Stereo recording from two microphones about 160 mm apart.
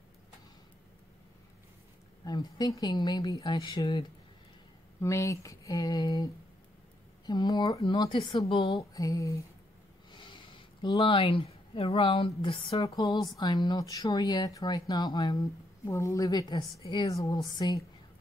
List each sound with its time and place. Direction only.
2.2 s speech: 25° left (ahead or behind)
5.0 s speech: 20° left (ahead or behind)
10.1 s speech: 30° left (ahead or behind)